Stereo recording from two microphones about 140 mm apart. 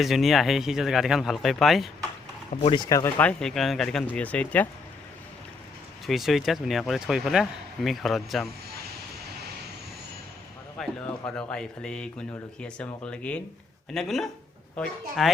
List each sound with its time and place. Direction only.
0.0 s speech: centre (ahead or behind)
2.6 s speech: 35° left (ahead or behind)
3.0 s speech: 10° left (ahead or behind)
6.1 s speech: centre (ahead or behind)
10.8 s music: 5° left (ahead or behind)
11.3 s speech: 5° left (ahead or behind)